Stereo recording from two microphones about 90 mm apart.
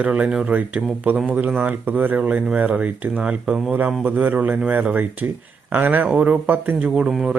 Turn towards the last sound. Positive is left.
turn(degrees=-5)  # may be behind; listen again after turning